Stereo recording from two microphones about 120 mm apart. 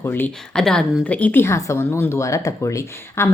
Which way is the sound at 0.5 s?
5° left (ahead or behind).